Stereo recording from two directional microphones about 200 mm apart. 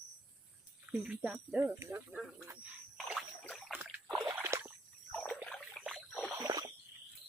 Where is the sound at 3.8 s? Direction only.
5° right (ahead or behind).